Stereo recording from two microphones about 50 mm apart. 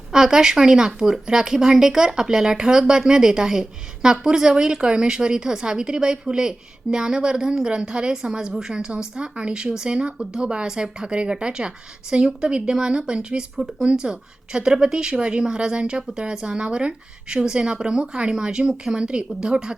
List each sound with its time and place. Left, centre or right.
0.1 s speech: centre